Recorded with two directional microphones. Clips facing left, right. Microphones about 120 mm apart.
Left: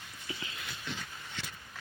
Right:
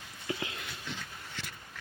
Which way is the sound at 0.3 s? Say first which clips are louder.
Right 7 dB; 60° right (ahead or behind).